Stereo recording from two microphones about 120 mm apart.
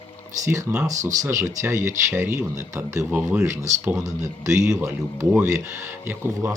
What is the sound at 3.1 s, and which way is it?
Speech, 10° right (ahead or behind).